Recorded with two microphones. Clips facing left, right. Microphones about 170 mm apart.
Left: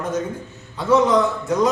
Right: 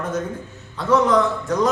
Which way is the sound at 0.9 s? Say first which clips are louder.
Left 1 dB; 10° left (ahead or behind).